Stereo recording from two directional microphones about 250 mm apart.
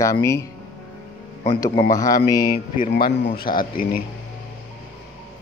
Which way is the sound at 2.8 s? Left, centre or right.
Left.